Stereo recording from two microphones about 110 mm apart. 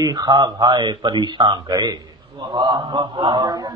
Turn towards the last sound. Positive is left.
turn(degrees=-40)  # may be behind; listen again after turning